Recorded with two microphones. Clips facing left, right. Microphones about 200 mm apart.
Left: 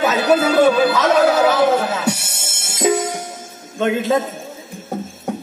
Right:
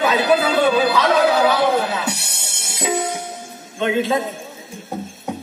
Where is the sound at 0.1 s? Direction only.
45° left (ahead or behind).